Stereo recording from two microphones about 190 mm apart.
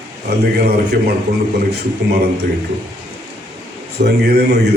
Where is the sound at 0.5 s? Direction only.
55° right (ahead or behind).